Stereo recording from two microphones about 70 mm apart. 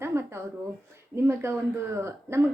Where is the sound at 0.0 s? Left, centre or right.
Right.